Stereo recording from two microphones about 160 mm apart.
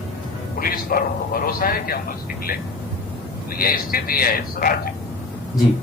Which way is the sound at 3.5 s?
65° left (ahead or behind).